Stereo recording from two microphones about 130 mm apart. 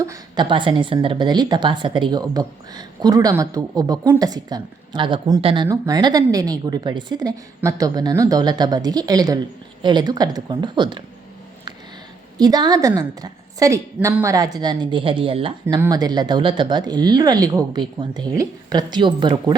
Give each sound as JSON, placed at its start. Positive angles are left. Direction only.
{"t": 0.0, "sound": "a sound", "side_deg": -25}
{"t": 0.4, "sound": "speech", "side_deg": -40}
{"t": 5.6, "sound": "a woman's voice", "side_deg": -30}
{"t": 12.4, "sound": "a woman's voice", "side_deg": -30}
{"t": 15.9, "sound": "speech", "side_deg": -30}